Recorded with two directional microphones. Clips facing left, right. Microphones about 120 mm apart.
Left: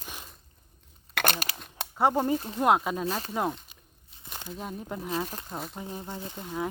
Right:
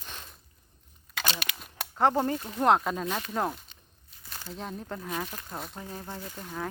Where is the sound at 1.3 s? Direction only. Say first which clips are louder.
Left 2 dB; 35° left (ahead or behind).